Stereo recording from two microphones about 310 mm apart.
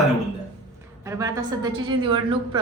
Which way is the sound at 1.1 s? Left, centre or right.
Centre.